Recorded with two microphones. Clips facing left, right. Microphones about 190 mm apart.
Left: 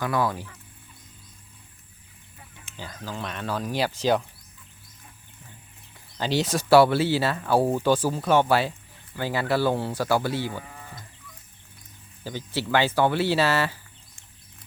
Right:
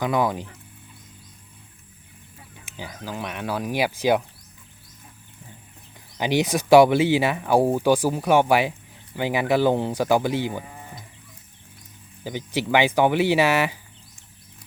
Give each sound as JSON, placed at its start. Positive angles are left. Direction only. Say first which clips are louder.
{"t": 0.0, "sound": "speech", "louder": "right 3 dB", "side_deg": -20}
{"t": 2.6, "sound": "speech", "louder": "right 2 dB", "side_deg": -15}
{"t": 6.1, "sound": "speech", "louder": "right 3 dB", "side_deg": -15}
{"t": 12.2, "sound": "speech", "louder": "right 3 dB", "side_deg": -15}